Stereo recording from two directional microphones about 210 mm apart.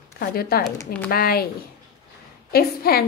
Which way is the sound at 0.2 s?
45° left (ahead or behind).